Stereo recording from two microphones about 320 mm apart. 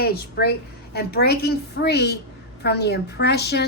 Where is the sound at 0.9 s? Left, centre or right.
Left.